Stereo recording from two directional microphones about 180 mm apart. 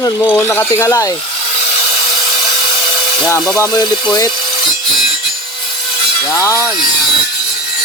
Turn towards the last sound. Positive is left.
turn(degrees=15)  # may be behind; listen again after turning